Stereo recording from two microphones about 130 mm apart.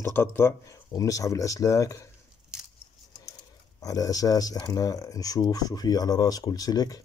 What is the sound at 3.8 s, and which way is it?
Speech, 30° left (ahead or behind).